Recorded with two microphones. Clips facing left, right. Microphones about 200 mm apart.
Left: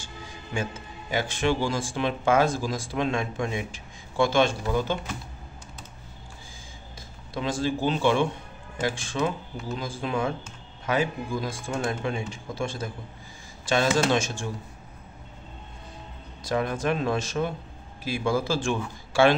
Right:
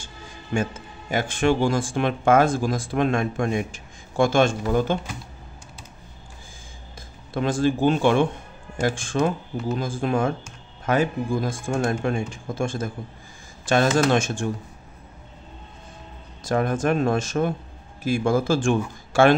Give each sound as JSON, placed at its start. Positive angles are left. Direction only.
{"t": 0.5, "sound": "speech", "side_deg": -45}
{"t": 7.3, "sound": "speech", "side_deg": -50}
{"t": 16.4, "sound": "speech", "side_deg": -50}